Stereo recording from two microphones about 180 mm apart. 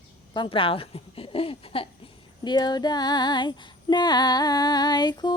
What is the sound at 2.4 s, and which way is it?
Female singing, 25° left (ahead or behind).